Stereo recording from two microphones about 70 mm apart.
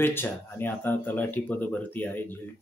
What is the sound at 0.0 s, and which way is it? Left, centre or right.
Speech, left.